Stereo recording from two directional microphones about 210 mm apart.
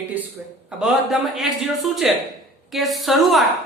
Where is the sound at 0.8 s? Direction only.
5° right (ahead or behind).